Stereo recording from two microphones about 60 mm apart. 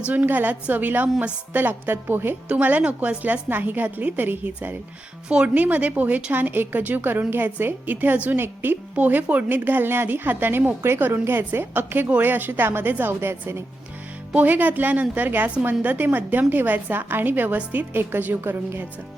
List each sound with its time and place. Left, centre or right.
0.1 s a woman's voice: right
2.5 s a woman's voice: right
14.3 s a woman's voice: right